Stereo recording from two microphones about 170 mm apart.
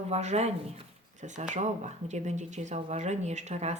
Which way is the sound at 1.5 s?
45° right (ahead or behind).